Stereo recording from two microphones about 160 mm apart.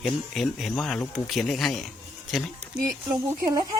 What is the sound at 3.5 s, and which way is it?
Speech, 25° right (ahead or behind).